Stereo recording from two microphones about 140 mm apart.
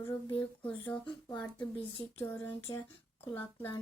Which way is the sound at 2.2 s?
15° left (ahead or behind).